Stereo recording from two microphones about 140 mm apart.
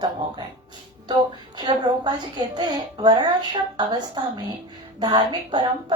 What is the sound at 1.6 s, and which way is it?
A woman's voice, 30° right (ahead or behind).